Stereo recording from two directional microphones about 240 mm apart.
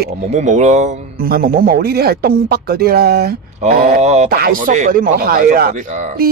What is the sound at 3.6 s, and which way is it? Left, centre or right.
Speech, right.